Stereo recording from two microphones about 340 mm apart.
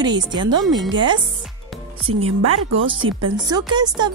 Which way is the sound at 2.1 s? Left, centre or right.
Right.